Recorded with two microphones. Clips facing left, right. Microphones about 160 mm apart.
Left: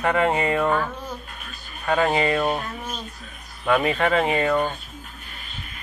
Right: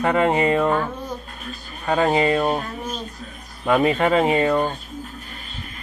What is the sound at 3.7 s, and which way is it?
Speech, 30° right (ahead or behind).